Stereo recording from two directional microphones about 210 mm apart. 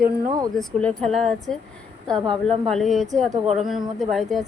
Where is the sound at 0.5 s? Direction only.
5° left (ahead or behind).